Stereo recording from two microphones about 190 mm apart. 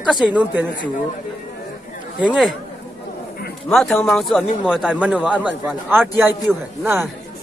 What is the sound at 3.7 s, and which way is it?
A man's voice, 5° left (ahead or behind).